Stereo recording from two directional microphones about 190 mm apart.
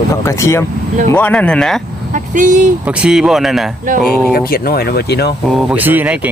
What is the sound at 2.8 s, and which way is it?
Speech, 5° right (ahead or behind).